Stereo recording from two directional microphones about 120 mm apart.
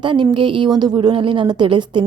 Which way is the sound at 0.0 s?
40° right (ahead or behind).